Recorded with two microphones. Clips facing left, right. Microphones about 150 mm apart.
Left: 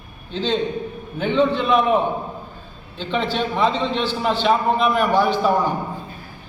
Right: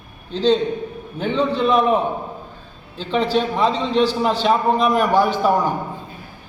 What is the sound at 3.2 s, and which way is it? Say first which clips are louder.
A man's voice: right 2 dB; 35° right (ahead or behind).